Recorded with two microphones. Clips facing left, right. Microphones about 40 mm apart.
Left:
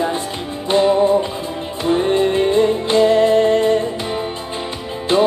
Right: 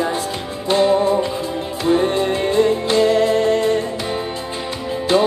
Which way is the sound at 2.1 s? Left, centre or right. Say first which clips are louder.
Left 3 dB; left.